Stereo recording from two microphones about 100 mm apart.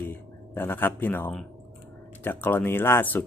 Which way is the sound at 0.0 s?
20° left (ahead or behind).